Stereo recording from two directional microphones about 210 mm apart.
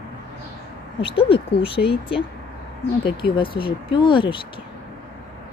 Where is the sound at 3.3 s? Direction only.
25° left (ahead or behind).